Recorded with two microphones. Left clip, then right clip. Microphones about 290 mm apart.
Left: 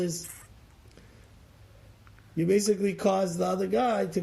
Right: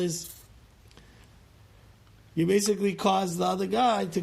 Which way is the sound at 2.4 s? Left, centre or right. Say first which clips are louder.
Even; right.